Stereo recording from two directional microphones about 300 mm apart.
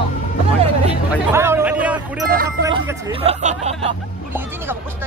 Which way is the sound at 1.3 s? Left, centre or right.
Centre.